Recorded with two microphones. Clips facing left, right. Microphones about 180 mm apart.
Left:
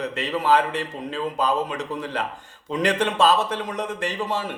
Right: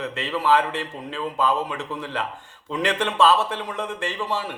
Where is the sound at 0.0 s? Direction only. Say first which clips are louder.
Left 1 dB; 40° left (ahead or behind).